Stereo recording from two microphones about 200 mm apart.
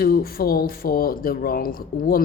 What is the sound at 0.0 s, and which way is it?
A woman's voice, 50° left (ahead or behind).